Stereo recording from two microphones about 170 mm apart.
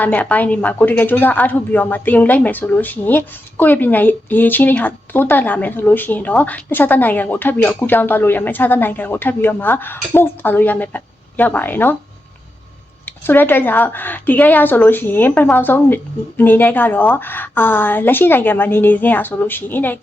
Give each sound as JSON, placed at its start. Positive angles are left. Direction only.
{"t": 0.0, "sound": "a woman's voice", "side_deg": 10}
{"t": 13.1, "sound": "a woman's voice", "side_deg": 10}